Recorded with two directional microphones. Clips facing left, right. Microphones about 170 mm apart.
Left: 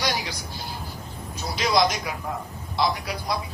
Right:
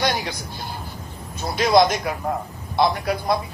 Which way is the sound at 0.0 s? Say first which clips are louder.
Right 4 dB; 50° right (ahead or behind).